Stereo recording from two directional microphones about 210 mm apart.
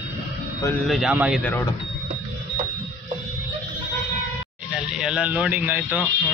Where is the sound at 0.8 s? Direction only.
Centre (ahead or behind).